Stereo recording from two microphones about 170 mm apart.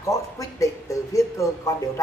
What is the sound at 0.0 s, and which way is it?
Speech, 20° left (ahead or behind).